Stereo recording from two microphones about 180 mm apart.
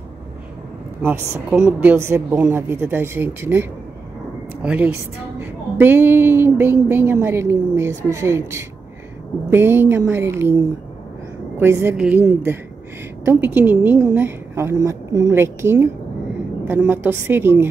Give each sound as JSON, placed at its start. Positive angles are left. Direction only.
{"t": 1.5, "sound": "a woman's voice", "side_deg": -5}
{"t": 4.6, "sound": "a woman's voice", "side_deg": -10}